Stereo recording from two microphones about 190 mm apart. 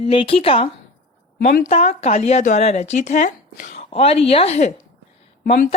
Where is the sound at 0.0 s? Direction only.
30° left (ahead or behind).